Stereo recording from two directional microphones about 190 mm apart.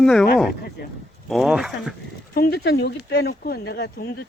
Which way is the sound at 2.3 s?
55° left (ahead or behind).